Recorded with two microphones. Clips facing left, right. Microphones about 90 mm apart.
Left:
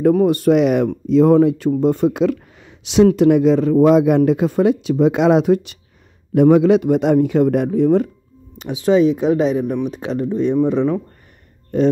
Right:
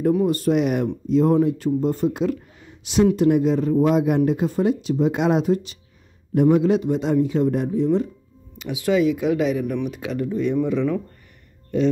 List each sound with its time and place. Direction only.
0.1 s speech: 70° left (ahead or behind)
6.3 s a man's voice: 90° left; by 8.1 s 60° left (ahead or behind)
8.5 s speech: 30° left (ahead or behind)